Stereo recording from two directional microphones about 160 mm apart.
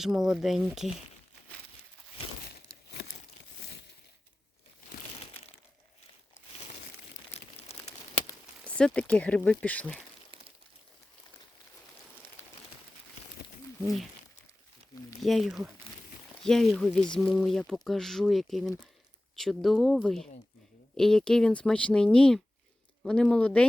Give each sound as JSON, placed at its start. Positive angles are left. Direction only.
{"t": 0.0, "sound": "speech", "side_deg": 0}
{"t": 7.3, "sound": "crumpling", "side_deg": 40}
{"t": 8.6, "sound": "speech", "side_deg": 5}
{"t": 10.3, "sound": "crumpling", "side_deg": -30}
{"t": 15.2, "sound": "speech", "side_deg": 0}